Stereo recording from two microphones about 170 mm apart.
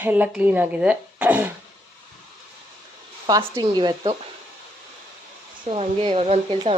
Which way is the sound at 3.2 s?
20° right (ahead or behind).